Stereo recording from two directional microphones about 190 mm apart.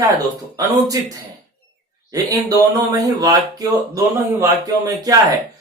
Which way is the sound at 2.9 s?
20° right (ahead or behind).